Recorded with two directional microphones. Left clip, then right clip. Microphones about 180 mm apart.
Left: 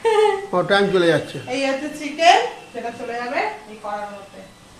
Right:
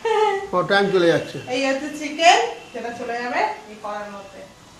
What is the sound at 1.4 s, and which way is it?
Speech, 25° left (ahead or behind).